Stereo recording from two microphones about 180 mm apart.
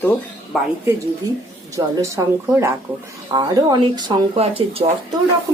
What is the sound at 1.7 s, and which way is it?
A woman's voice, 15° right (ahead or behind).